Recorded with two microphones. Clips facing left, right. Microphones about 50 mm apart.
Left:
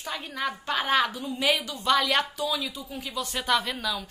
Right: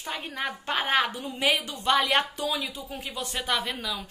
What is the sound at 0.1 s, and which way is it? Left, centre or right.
A woman's voice, right.